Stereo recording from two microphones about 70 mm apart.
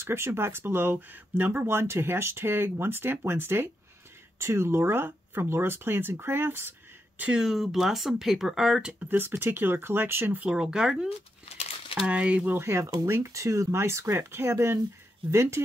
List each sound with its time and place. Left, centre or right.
0.0 s speech: right
7.2 s speech: centre
7.4 s speech: centre
9.0 s speech: right
10.4 s speech: centre
12.1 s speech: centre
12.5 s speech: right